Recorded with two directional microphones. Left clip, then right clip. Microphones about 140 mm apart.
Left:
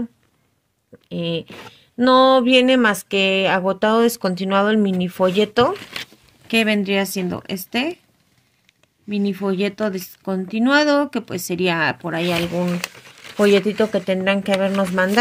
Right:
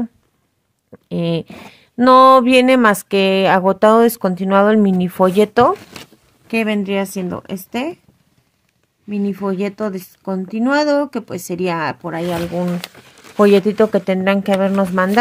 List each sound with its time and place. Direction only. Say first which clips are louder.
1.0 s speech: right 4 dB; 45° right (ahead or behind)
4.2 s speech: right 5 dB; 25° right (ahead or behind)
6.4 s speech: left 1 dB; centre (ahead or behind)
9.1 s speech: right 1 dB; centre (ahead or behind)
13.4 s speech: right 4 dB; 35° right (ahead or behind)